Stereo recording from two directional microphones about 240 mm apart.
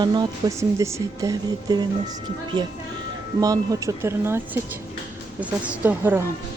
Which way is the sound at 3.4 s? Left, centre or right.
Centre.